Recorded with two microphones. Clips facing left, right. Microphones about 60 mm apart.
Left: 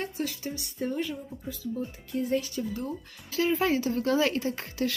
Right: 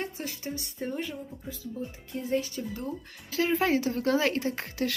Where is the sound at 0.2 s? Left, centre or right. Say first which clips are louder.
Left 3 dB; right.